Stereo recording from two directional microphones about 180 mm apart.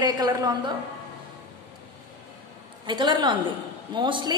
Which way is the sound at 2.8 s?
25° right (ahead or behind).